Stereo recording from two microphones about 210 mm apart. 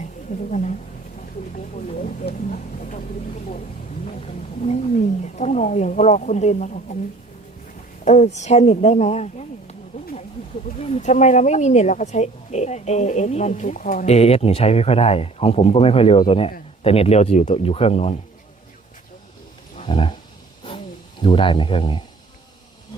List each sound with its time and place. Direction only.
0.5 s speech: 35° left (ahead or behind)
4.0 s speech: 35° left (ahead or behind)
8.0 s speech: 35° left (ahead or behind)
19.7 s roaring cats: 25° left (ahead or behind)
20.7 s a sound: 25° left (ahead or behind)